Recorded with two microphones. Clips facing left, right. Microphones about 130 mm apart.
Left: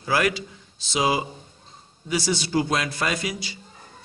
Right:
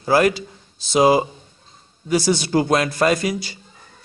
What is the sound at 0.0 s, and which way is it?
A man's voice, 35° right (ahead or behind).